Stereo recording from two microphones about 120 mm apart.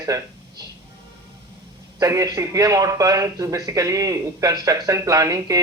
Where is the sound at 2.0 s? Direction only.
30° right (ahead or behind).